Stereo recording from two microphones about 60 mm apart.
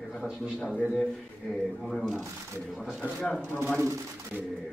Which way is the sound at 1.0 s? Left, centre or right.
Centre.